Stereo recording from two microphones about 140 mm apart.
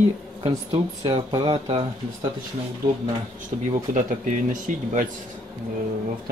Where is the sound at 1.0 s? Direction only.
35° right (ahead or behind).